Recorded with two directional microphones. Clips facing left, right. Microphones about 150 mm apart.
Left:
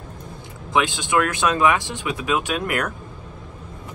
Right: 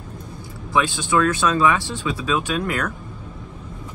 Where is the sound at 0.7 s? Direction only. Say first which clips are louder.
Right 1 dB; 20° left (ahead or behind).